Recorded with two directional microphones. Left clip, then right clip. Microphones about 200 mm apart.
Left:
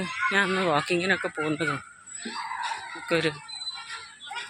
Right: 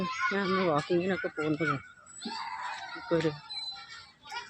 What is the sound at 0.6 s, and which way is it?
Speech, 15° left (ahead or behind).